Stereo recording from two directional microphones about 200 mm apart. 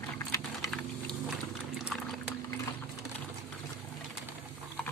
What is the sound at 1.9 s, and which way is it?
Pour, centre (ahead or behind).